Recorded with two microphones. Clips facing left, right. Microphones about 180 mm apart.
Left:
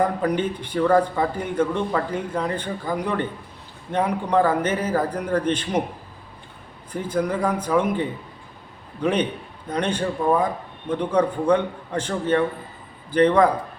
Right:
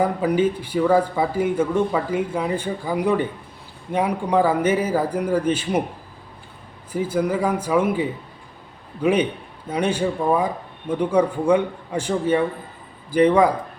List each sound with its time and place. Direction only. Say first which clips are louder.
0.0 s speech: right 3 dB; 5° right (ahead or behind)
6.9 s speech: right 2 dB; 5° right (ahead or behind)